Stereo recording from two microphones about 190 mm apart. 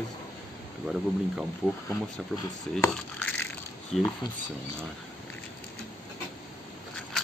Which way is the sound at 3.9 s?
Centre (ahead or behind).